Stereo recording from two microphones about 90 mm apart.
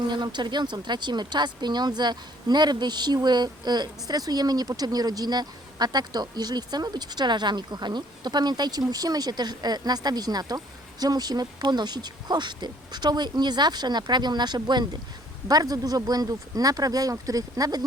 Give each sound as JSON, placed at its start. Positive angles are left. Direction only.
{"t": 0.1, "sound": "speech", "side_deg": -55}